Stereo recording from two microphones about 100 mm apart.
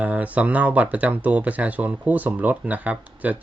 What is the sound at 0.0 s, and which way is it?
Speech, 15° right (ahead or behind).